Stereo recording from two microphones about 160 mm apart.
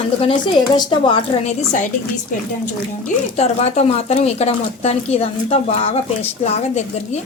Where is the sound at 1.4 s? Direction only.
50° left (ahead or behind).